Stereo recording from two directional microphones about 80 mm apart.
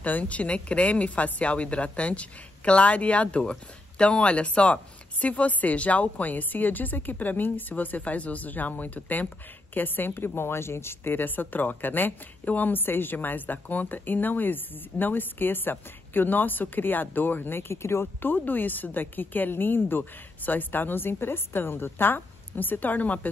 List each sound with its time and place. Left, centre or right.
0.0 s a woman's voice: centre